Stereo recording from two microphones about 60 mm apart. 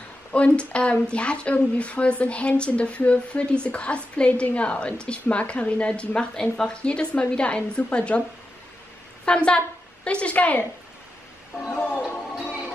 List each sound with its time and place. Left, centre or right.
0.3 s speech: centre
9.2 s a woman's voice: centre
11.7 s music: left